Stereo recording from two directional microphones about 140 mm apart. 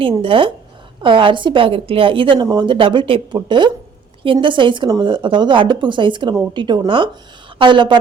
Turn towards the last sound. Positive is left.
turn(degrees=-35)  # may be behind; listen again after turning